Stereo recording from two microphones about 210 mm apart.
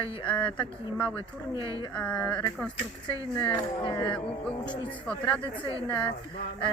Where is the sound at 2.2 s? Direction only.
20° left (ahead or behind).